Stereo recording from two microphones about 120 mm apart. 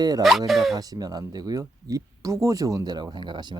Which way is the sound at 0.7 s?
30° right (ahead or behind).